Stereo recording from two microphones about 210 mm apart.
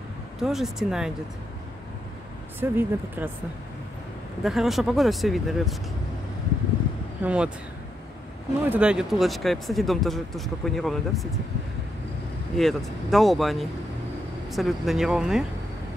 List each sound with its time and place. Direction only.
0.4 s speech: centre (ahead or behind)
2.6 s speech: 10° right (ahead or behind)
4.4 s speech: centre (ahead or behind)
7.2 s speech: 5° right (ahead or behind)
8.6 s speech: 5° right (ahead or behind)
12.5 s speech: centre (ahead or behind)